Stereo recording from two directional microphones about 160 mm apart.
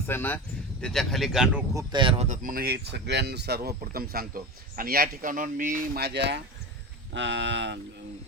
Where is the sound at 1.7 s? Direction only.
30° right (ahead or behind).